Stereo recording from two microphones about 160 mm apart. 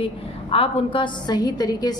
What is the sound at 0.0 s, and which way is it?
A woman's voice, 35° left (ahead or behind).